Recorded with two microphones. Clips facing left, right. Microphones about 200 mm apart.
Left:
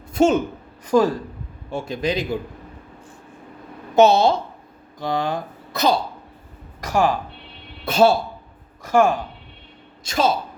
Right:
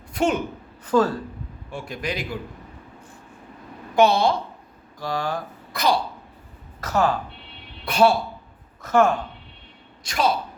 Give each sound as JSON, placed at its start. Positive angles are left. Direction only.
{"t": 0.1, "sound": "a sound", "side_deg": 25}
{"t": 0.9, "sound": "a woman's voice", "side_deg": 15}
{"t": 1.7, "sound": "a man's voice", "side_deg": 25}
{"t": 3.9, "sound": "a man's voice", "side_deg": 25}
{"t": 6.8, "sound": "a woman's voice", "side_deg": 15}
{"t": 7.9, "sound": "a man's voice", "side_deg": 25}
{"t": 8.8, "sound": "a woman's voice", "side_deg": 10}
{"t": 10.0, "sound": "a man's voice", "side_deg": 25}